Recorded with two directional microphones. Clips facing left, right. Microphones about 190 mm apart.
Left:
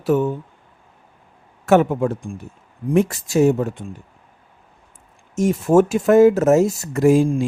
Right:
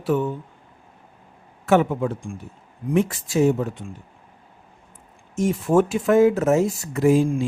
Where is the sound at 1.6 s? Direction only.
45° left (ahead or behind).